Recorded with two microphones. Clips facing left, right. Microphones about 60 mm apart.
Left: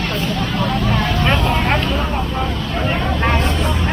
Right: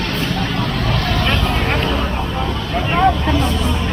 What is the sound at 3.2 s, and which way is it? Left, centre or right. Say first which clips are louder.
Vehicle: even; left.